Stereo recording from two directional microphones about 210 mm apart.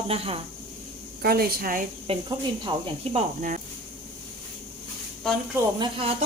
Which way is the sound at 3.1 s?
35° right (ahead or behind).